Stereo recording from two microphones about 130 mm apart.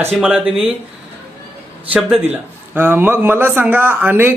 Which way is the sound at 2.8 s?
15° right (ahead or behind).